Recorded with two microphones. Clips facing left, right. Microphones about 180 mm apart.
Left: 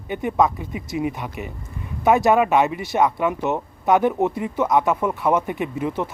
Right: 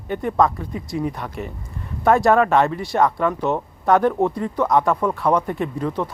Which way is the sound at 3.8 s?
20° left (ahead or behind).